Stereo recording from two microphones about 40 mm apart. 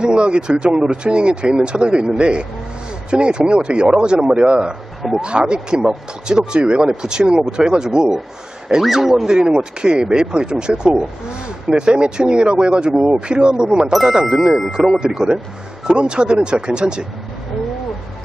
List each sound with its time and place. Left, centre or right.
0.0 s speech: right
8.9 s speech: centre
9.3 s speech: right